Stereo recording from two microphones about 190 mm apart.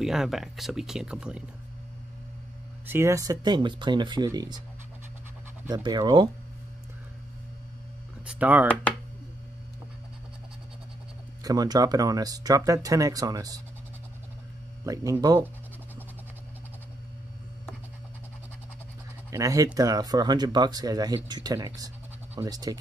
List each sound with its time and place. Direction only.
0.0 s speech: centre (ahead or behind)
2.9 s speech: 15° right (ahead or behind)
5.7 s speech: 20° right (ahead or behind)
8.3 s speech: 10° right (ahead or behind)
11.4 s speech: 20° right (ahead or behind)
14.9 s speech: 20° right (ahead or behind)
19.3 s speech: 20° right (ahead or behind)